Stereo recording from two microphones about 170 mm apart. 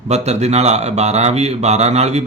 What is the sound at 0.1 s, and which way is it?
Speech, 40° right (ahead or behind).